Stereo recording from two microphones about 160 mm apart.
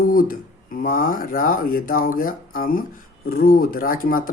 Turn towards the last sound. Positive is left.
turn(degrees=65)  # may be behind; listen again after turning